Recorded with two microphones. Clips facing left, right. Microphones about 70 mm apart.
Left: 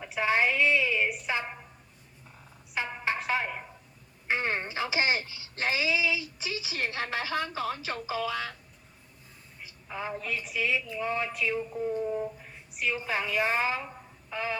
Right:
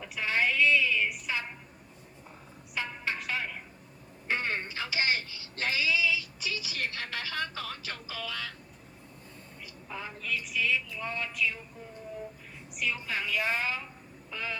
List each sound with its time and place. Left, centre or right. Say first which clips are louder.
0.0 s a sound: left 3 dB; left
2.7 s music: left 3 dB; left
4.3 s speech: left 2 dB; left
10.1 s speech: even; left
12.7 s speech: left 3 dB; left